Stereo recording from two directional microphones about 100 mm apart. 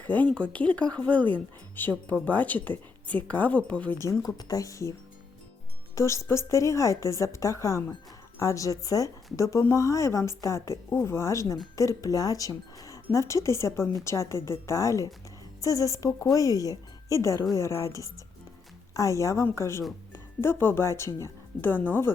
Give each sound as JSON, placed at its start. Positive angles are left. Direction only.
{"t": 0.0, "sound": "a woman's voice", "side_deg": 15}
{"t": 4.0, "sound": "a woman's voice", "side_deg": 30}